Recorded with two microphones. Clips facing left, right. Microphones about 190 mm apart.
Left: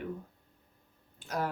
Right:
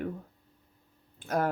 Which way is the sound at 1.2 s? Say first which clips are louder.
Right 7 dB; 55° right (ahead or behind).